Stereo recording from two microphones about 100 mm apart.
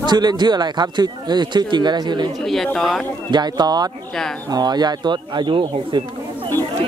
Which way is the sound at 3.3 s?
45° right (ahead or behind).